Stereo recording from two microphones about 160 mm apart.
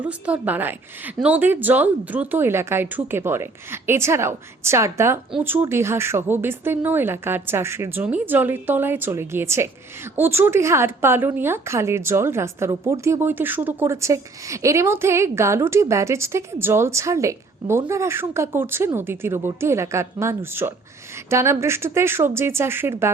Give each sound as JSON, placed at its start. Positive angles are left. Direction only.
{"t": 0.0, "sound": "a woman's voice", "side_deg": -10}